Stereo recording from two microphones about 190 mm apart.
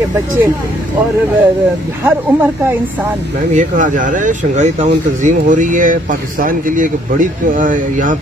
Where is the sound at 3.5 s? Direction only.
40° right (ahead or behind).